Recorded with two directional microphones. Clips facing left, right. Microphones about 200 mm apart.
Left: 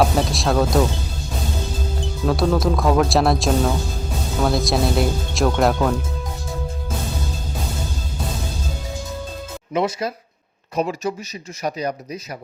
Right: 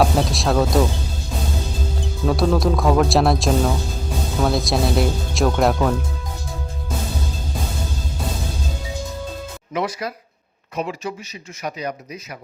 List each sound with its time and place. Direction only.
0.0 s speech: centre (ahead or behind)
2.2 s speech: centre (ahead or behind)
9.7 s speech: 25° left (ahead or behind)
10.8 s speech: 40° left (ahead or behind)